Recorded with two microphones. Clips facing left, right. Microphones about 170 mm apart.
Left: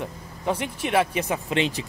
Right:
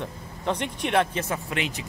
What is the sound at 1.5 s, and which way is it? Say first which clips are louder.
Speech: left 9 dB; 30° left (ahead or behind).